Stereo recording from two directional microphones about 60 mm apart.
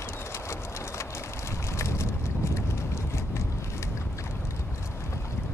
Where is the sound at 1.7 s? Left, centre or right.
Left.